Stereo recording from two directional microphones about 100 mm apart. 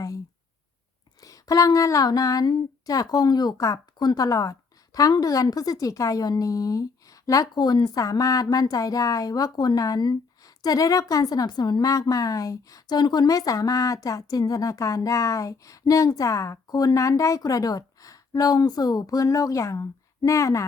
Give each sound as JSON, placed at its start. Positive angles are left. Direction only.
{"t": 1.2, "sound": "a woman's voice", "side_deg": 35}